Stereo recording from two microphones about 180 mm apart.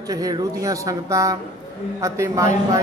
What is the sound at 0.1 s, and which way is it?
A man's voice, 20° right (ahead or behind).